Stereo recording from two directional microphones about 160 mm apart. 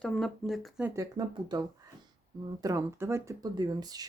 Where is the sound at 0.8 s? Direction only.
20° right (ahead or behind).